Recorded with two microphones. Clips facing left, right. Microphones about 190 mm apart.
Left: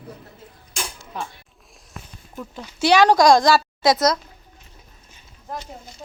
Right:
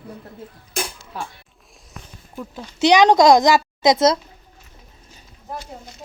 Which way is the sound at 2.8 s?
20° right (ahead or behind).